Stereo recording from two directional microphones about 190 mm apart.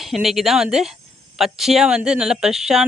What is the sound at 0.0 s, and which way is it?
Speech, centre (ahead or behind).